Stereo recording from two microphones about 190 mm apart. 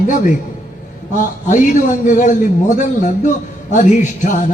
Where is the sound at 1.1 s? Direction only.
40° left (ahead or behind).